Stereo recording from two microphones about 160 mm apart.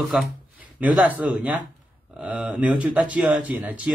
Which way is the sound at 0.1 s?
5° right (ahead or behind).